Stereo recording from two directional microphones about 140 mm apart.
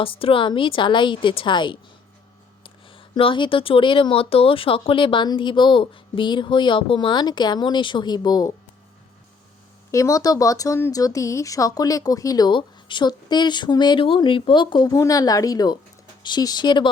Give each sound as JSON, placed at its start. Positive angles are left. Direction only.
{"t": 0.0, "sound": "speech", "side_deg": 40}
{"t": 9.9, "sound": "speech", "side_deg": 25}